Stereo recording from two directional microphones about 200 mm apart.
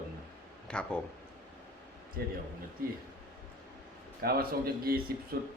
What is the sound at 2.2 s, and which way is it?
Speech, 50° right (ahead or behind).